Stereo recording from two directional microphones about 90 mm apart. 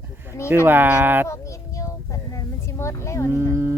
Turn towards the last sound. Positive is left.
turn(degrees=-25)  # may be behind; listen again after turning